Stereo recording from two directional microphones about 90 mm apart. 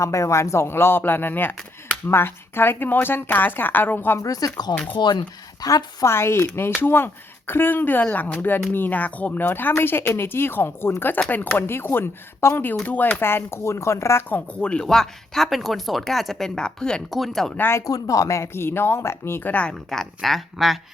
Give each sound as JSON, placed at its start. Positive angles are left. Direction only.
{"t": 0.0, "sound": "speech", "side_deg": 35}
{"t": 4.2, "sound": "speech", "side_deg": 40}
{"t": 4.7, "sound": "speech", "side_deg": 15}
{"t": 4.9, "sound": "speech", "side_deg": 60}
{"t": 5.6, "sound": "a woman's voice", "side_deg": 40}
{"t": 6.1, "sound": "speech", "side_deg": 30}
{"t": 14.3, "sound": "speech", "side_deg": 15}
{"t": 17.6, "sound": "speech", "side_deg": 30}
{"t": 17.8, "sound": "speech", "side_deg": 40}
{"t": 19.9, "sound": "speech", "side_deg": 5}